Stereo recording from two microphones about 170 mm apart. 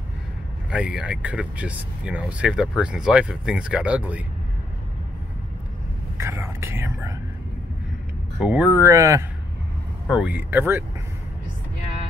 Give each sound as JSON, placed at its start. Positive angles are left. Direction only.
{"t": 0.7, "sound": "speech", "side_deg": -5}
{"t": 6.1, "sound": "speech", "side_deg": -15}
{"t": 8.4, "sound": "speech", "side_deg": -5}
{"t": 10.0, "sound": "speech", "side_deg": -5}